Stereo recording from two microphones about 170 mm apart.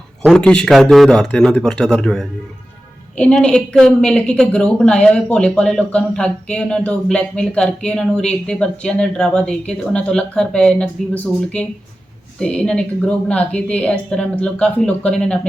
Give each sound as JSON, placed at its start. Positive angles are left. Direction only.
{"t": 0.3, "sound": "a woman's voice", "side_deg": 5}